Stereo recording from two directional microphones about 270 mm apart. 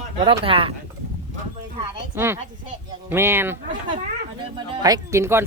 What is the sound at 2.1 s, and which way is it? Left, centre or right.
Speech, centre.